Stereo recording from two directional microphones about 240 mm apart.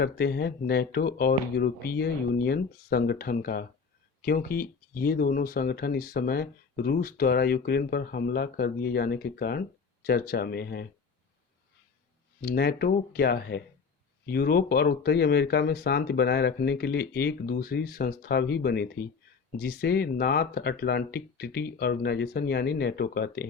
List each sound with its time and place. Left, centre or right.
0.0 s speech: left
12.4 s speech: left